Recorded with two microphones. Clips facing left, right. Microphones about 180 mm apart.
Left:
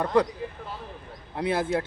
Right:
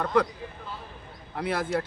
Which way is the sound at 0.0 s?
20° left (ahead or behind).